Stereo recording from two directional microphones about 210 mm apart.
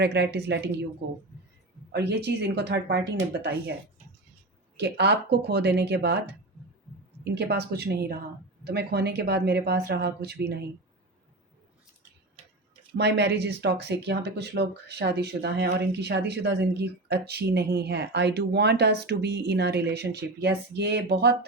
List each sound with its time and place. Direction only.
0.0 s speech: 55° right (ahead or behind)
1.9 s speech: 50° right (ahead or behind)
4.8 s speech: 55° right (ahead or behind)
7.3 s speech: 50° right (ahead or behind)
12.9 s speech: 55° right (ahead or behind)